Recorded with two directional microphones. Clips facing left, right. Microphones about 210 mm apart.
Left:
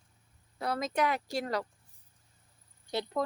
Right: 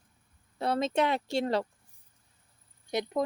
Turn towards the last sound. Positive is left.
turn(degrees=-15)  # may be behind; listen again after turning